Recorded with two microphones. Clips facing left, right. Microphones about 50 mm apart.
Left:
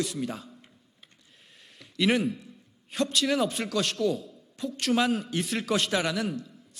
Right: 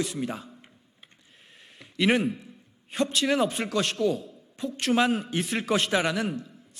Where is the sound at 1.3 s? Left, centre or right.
Centre.